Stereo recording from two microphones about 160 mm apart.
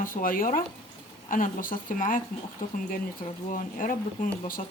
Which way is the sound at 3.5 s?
60° left (ahead or behind).